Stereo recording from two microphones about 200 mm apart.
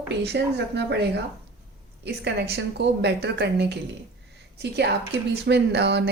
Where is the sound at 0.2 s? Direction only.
55° right (ahead or behind).